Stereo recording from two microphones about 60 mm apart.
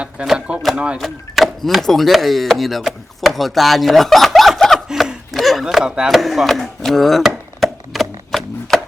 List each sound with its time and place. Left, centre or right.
0.3 s speech: centre
0.9 s speech: centre
4.9 s a sound: centre
6.1 s speech: centre
7.6 s chopping: centre